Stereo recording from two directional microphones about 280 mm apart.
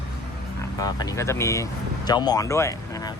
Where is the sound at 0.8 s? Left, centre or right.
Centre.